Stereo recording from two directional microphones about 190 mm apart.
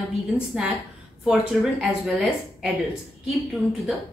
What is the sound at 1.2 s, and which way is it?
A woman's voice, 5° right (ahead or behind).